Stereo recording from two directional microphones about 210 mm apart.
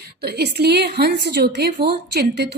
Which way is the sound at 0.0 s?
50° right (ahead or behind).